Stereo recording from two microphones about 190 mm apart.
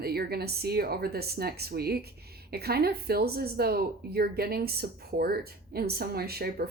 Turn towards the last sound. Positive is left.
turn(degrees=-55)  # may be behind; listen again after turning